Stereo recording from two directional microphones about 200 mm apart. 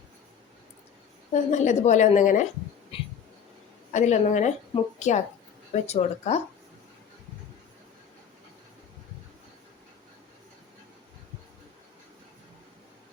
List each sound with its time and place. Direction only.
1.3 s a woman's voice: 35° left (ahead or behind)
2.9 s a sound: 30° left (ahead or behind)
3.9 s a woman's voice: 35° left (ahead or behind)